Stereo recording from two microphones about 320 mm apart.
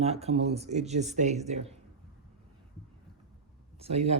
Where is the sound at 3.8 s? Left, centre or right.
Centre.